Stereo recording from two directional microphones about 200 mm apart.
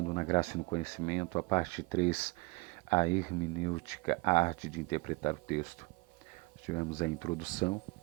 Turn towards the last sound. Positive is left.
turn(degrees=35)  # may be behind; listen again after turning